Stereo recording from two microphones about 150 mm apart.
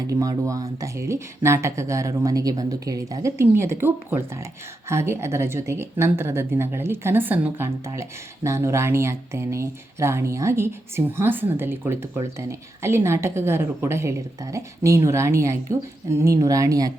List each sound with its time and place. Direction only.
0.1 s speech: 25° right (ahead or behind)